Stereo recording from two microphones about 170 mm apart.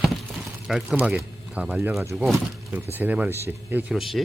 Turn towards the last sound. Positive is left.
turn(degrees=0)  # may be behind; listen again after turning